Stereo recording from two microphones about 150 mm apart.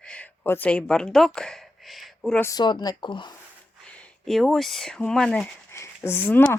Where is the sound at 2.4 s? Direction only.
25° left (ahead or behind).